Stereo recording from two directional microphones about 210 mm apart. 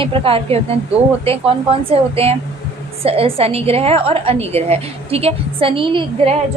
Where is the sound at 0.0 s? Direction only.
25° right (ahead or behind).